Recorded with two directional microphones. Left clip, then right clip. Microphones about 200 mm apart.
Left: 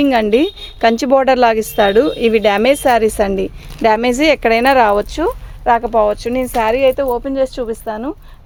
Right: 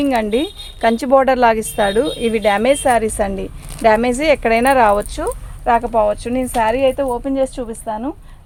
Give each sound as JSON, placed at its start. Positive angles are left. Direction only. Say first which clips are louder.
{"t": 0.0, "sound": "a woman's voice", "louder": "left 4 dB", "side_deg": 50}